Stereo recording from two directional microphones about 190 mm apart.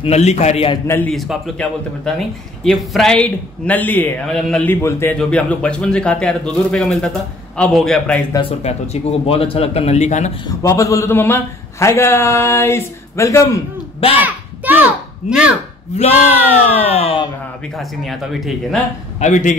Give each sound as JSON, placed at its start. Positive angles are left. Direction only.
{"t": 0.0, "sound": "speech", "side_deg": 35}
{"t": 0.8, "sound": "a man's voice", "side_deg": 10}
{"t": 8.3, "sound": "speech", "side_deg": 30}
{"t": 10.4, "sound": "a man's voice", "side_deg": 20}
{"t": 13.9, "sound": "speech", "side_deg": 30}
{"t": 14.2, "sound": "a sound", "side_deg": -10}
{"t": 16.0, "sound": "speech", "side_deg": 35}
{"t": 17.7, "sound": "a man's voice", "side_deg": 0}
{"t": 19.1, "sound": "a man's voice", "side_deg": 40}